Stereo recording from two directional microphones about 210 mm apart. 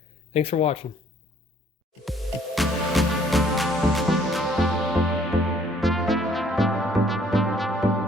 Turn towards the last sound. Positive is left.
turn(degrees=0)  # may be behind; listen again after turning